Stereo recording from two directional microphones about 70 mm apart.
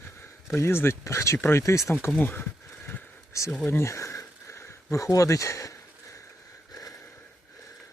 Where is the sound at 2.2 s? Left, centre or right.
Left.